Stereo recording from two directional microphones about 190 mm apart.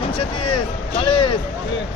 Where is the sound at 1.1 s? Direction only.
30° left (ahead or behind).